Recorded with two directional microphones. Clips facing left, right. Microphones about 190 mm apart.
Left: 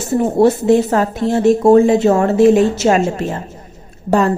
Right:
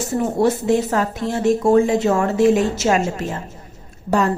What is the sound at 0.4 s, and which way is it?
Speech, 35° left (ahead or behind).